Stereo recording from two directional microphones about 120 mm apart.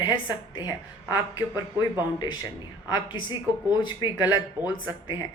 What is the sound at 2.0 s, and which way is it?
A woman's voice, 35° left (ahead or behind).